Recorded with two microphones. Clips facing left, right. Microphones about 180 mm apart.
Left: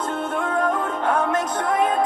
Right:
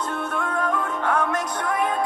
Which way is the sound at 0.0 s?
20° left (ahead or behind).